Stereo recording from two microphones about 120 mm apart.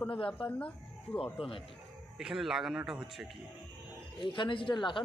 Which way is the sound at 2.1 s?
5° right (ahead or behind).